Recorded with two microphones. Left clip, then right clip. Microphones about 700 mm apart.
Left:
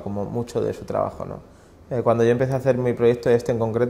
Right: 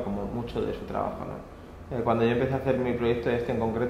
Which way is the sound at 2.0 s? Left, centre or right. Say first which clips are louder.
Left 6 dB; left.